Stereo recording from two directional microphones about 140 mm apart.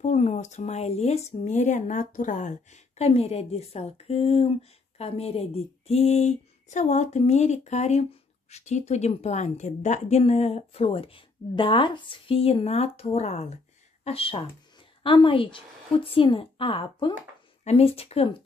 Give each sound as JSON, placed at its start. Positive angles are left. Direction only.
{"t": 0.0, "sound": "speech", "side_deg": 55}
{"t": 14.0, "sound": "speech", "side_deg": 40}